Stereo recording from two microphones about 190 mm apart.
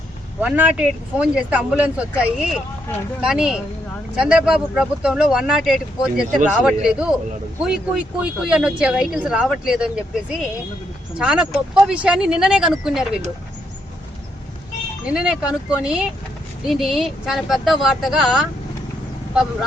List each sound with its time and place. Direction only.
0.4 s speech: 10° right (ahead or behind)
11.2 s speech: 5° right (ahead or behind)
15.0 s speech: 5° right (ahead or behind)